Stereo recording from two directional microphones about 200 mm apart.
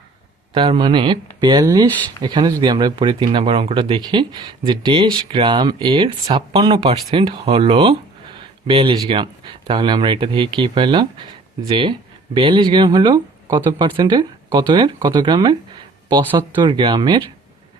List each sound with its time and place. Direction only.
0.5 s speech: 25° right (ahead or behind)